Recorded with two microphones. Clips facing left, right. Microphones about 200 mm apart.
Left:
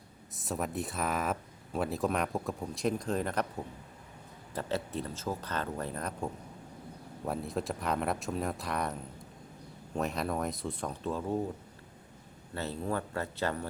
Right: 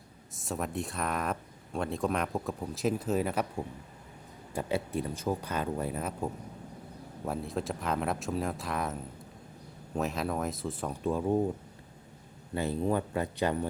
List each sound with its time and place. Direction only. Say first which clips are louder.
0.3 s speech: even; centre (ahead or behind)
4.5 s speech: right 3 dB; 10° right (ahead or behind)
12.5 s speech: right 5 dB; 15° right (ahead or behind)